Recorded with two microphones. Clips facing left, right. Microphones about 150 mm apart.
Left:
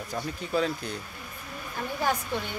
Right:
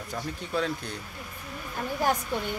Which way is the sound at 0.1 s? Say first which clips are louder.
Left 2 dB; 5° left (ahead or behind).